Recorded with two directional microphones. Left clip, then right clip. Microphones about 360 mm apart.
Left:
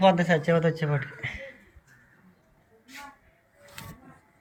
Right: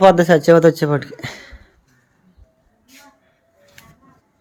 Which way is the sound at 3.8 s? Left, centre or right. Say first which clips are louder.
Left 2 dB; centre.